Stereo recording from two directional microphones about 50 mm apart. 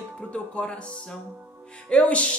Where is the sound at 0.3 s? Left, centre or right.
Left.